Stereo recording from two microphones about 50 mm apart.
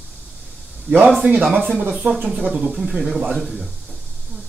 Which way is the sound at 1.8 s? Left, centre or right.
Centre.